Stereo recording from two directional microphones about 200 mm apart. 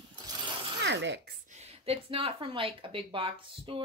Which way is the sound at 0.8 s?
60° right (ahead or behind).